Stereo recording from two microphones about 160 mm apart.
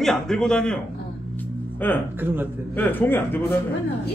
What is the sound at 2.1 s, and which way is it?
Speech, 10° right (ahead or behind).